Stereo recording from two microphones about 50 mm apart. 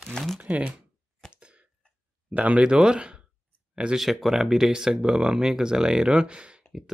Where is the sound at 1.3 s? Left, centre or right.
Right.